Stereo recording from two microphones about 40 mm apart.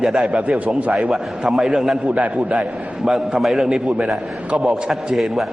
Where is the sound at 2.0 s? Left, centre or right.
Right.